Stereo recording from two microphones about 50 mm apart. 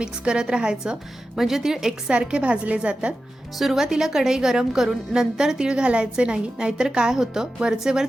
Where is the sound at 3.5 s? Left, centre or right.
Centre.